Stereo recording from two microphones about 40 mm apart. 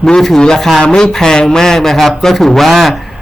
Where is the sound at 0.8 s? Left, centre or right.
Centre.